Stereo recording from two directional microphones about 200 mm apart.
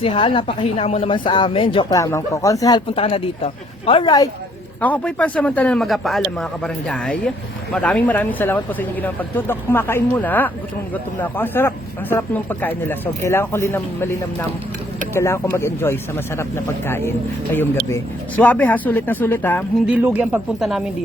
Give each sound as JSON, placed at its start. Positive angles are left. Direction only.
{"t": 0.0, "sound": "speech", "side_deg": 25}
{"t": 4.8, "sound": "a man's voice", "side_deg": 5}
{"t": 19.9, "sound": "speech", "side_deg": -10}